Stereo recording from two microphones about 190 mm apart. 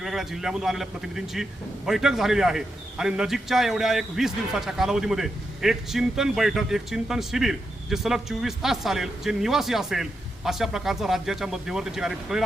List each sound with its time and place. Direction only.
0.0 s a man's voice: centre (ahead or behind)